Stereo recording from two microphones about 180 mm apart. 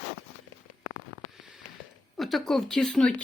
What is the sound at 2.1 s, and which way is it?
Speech, centre (ahead or behind).